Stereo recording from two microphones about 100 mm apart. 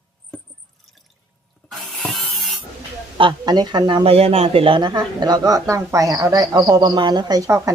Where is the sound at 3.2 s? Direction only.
45° right (ahead or behind).